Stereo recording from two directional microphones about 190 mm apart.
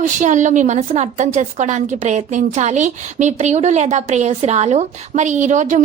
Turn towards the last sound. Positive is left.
turn(degrees=-40)  # may be behind; listen again after turning